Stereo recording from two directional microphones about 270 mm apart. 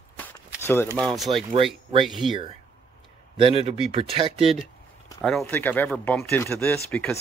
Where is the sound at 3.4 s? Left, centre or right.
Right.